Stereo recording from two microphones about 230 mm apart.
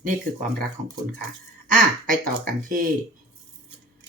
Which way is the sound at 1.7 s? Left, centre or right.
Right.